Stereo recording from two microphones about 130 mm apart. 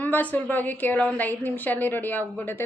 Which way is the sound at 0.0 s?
15° left (ahead or behind).